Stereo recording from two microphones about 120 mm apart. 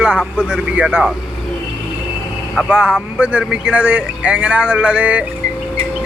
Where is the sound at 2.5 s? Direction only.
5° right (ahead or behind).